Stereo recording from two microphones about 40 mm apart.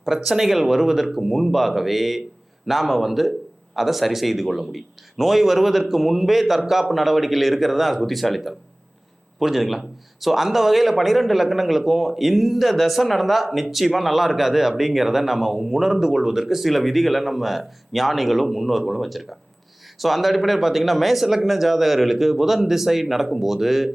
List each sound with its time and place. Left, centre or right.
0.0 s a man's voice: centre